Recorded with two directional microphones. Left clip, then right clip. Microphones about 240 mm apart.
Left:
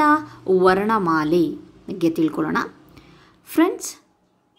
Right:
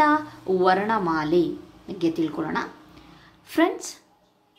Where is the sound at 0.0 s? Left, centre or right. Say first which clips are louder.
Left 3 dB; left.